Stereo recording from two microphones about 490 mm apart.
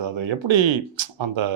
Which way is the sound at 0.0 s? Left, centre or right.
Right.